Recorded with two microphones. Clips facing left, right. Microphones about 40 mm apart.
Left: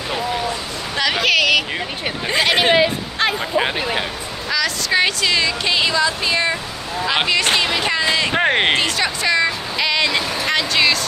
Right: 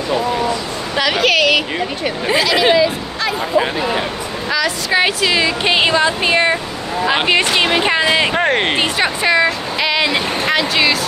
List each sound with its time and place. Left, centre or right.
0.9 s speech: centre
2.4 s speech: left
3.5 s speech: left
4.5 s a woman's voice: centre; by 8.3 s right
8.3 s speech: centre
8.7 s speech: right